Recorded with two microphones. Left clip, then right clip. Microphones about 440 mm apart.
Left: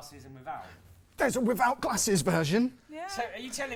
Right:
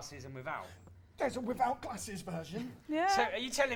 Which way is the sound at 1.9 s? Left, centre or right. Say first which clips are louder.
Left 15 dB; left.